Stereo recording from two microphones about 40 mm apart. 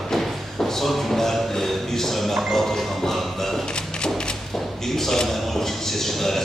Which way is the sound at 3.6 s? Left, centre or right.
Left.